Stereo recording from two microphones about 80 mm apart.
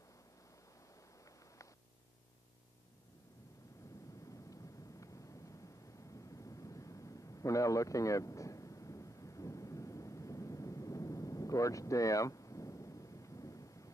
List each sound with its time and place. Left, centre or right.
5.0 s vehicle: left